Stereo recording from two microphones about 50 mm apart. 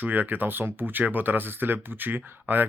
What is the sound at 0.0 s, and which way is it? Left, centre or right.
Speech, right.